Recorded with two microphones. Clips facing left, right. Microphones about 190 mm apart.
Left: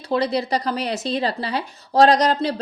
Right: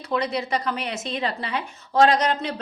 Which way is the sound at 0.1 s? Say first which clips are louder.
Left 4 dB; 35° left (ahead or behind).